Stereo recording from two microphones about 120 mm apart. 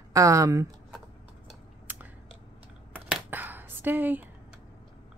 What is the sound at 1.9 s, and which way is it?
Biting, 15° right (ahead or behind).